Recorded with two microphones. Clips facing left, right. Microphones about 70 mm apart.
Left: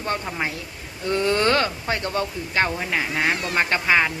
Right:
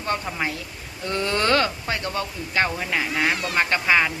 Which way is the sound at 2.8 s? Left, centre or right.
Centre.